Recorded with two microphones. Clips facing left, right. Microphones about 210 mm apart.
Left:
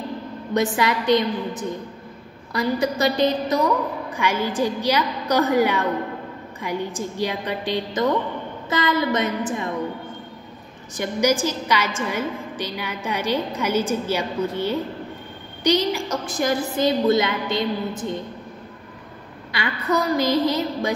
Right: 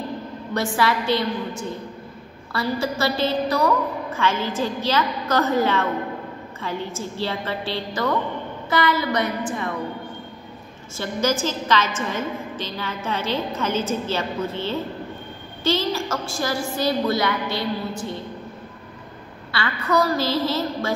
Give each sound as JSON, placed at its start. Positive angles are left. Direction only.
{"t": 0.6, "sound": "a woman's voice", "side_deg": 20}
{"t": 11.0, "sound": "a woman's voice", "side_deg": 15}
{"t": 19.5, "sound": "a woman's voice", "side_deg": 20}